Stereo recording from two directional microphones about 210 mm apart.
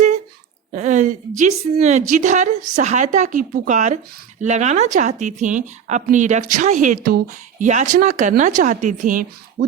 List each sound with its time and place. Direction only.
0.8 s a woman's voice: 35° right (ahead or behind)